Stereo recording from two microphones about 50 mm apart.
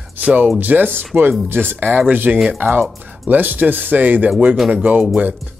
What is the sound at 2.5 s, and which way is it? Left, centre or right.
Speech, right.